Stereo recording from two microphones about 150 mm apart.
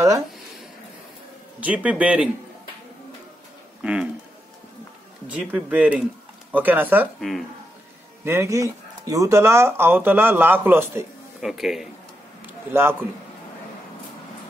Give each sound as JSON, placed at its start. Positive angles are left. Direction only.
{"t": 1.6, "sound": "speech", "side_deg": -10}
{"t": 3.8, "sound": "speech", "side_deg": -5}
{"t": 5.3, "sound": "speech", "side_deg": -10}
{"t": 7.2, "sound": "speech", "side_deg": 0}
{"t": 8.2, "sound": "speech", "side_deg": -15}
{"t": 11.4, "sound": "speech", "side_deg": 0}